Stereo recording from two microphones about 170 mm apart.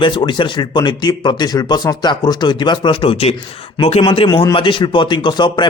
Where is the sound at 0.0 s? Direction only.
30° left (ahead or behind).